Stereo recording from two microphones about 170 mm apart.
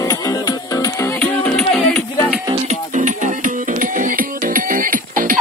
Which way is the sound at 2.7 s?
45° right (ahead or behind).